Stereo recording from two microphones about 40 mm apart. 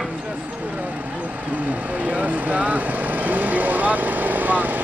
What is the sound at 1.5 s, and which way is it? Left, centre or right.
Vehicle, right.